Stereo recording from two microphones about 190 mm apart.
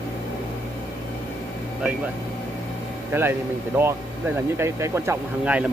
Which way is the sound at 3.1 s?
15° right (ahead or behind).